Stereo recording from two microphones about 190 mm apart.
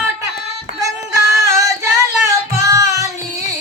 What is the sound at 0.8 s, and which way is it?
Music, 15° right (ahead or behind).